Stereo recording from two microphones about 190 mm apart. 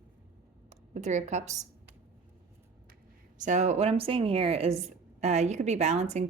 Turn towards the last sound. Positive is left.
turn(degrees=-35)  # may be behind; listen again after turning